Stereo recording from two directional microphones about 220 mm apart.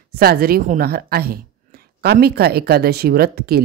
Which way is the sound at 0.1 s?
45° right (ahead or behind).